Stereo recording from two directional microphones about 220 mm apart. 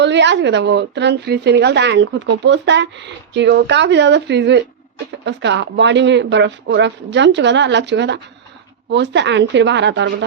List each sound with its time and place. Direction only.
0.0 s a woman's voice: 55° right (ahead or behind)